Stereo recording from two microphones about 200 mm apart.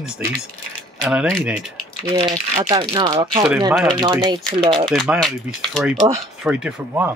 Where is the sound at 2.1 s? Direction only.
20° right (ahead or behind).